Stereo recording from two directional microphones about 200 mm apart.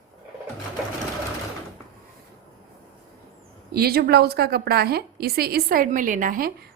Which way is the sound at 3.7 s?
50° right (ahead or behind).